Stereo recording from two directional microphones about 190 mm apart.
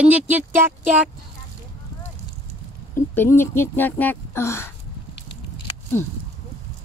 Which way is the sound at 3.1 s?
10° left (ahead or behind).